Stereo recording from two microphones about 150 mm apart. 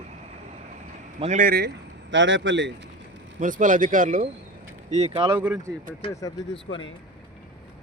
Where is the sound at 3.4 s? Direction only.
60° right (ahead or behind).